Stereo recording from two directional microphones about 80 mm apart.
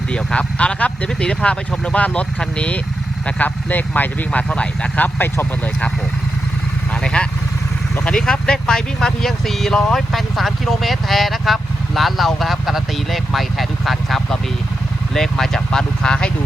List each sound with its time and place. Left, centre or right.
0.1 s speech: centre
6.9 s speech: centre